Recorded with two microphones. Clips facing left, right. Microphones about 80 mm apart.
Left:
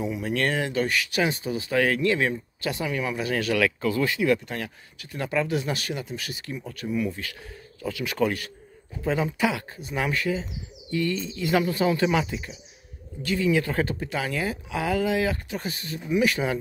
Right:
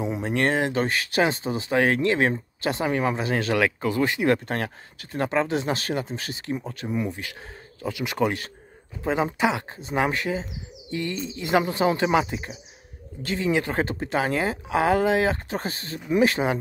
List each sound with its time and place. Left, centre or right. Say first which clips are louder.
0.0 s speech: right 2 dB; right
4.3 s speech: right 2 dB; right